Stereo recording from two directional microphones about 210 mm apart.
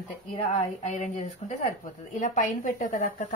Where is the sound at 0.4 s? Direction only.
30° left (ahead or behind).